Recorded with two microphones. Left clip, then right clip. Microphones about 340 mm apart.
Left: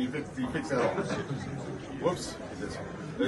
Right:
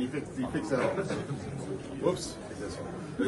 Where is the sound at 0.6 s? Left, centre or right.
Centre.